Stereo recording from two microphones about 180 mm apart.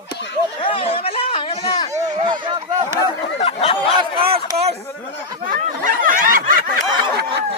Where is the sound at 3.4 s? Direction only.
35° left (ahead or behind).